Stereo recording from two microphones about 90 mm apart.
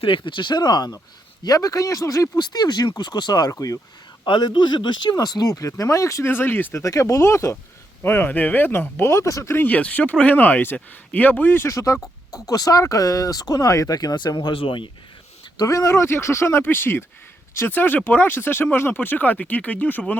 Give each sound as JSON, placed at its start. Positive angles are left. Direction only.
{"t": 0.0, "sound": "speech", "side_deg": 70}
{"t": 4.2, "sound": "speech", "side_deg": 55}
{"t": 5.1, "sound": "speech", "side_deg": 45}
{"t": 6.3, "sound": "speech", "side_deg": 25}
{"t": 6.7, "sound": "speech", "side_deg": 35}
{"t": 8.0, "sound": "speech", "side_deg": 20}
{"t": 9.1, "sound": "speech", "side_deg": 35}
{"t": 15.5, "sound": "speech", "side_deg": 40}